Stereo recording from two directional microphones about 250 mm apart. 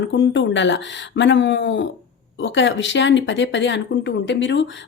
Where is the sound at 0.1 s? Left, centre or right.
Left.